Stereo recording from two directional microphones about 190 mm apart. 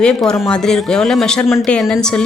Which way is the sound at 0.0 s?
5° left (ahead or behind).